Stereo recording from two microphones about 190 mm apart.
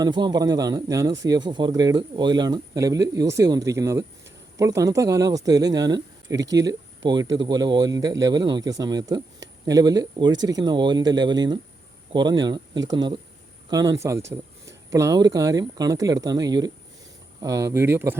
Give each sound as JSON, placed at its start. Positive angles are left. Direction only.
{"t": 0.0, "sound": "speech", "side_deg": -20}